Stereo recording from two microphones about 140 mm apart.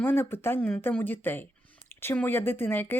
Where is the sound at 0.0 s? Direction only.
15° left (ahead or behind).